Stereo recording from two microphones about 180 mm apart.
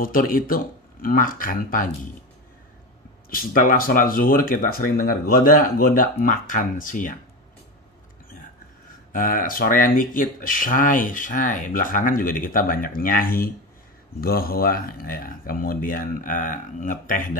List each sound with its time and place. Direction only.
0.0 s speech: 50° left (ahead or behind)
3.3 s speech: 50° left (ahead or behind)
9.1 s speech: 50° left (ahead or behind)